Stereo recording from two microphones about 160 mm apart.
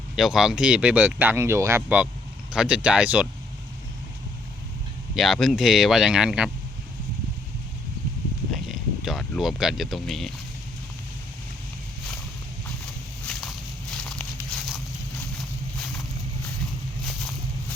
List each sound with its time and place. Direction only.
0.2 s speech: centre (ahead or behind)
5.1 s speech: centre (ahead or behind)
8.7 s a sound: centre (ahead or behind)
13.2 s walk: centre (ahead or behind)